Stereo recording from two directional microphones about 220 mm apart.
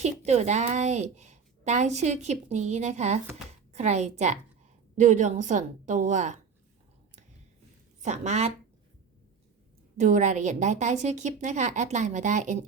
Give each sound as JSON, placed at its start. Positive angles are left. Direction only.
{"t": 0.0, "sound": "a woman's voice", "side_deg": -30}
{"t": 8.0, "sound": "a woman's voice", "side_deg": -30}
{"t": 10.0, "sound": "a woman's voice", "side_deg": -35}